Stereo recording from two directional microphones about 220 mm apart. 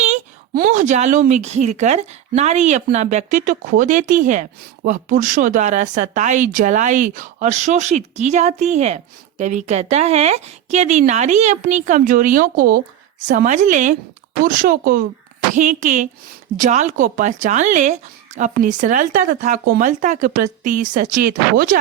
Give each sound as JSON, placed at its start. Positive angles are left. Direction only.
{"t": 0.0, "sound": "speech", "side_deg": -35}